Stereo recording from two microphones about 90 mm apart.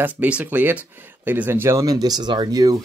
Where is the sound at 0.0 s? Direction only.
15° right (ahead or behind).